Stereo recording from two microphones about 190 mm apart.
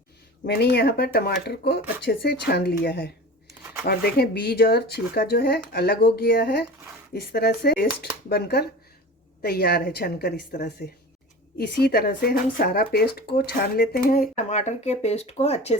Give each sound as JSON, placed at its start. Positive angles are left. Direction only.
{"t": 0.4, "sound": "speech", "side_deg": 60}